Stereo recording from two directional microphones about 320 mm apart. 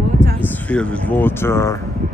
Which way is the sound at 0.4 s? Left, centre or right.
Centre.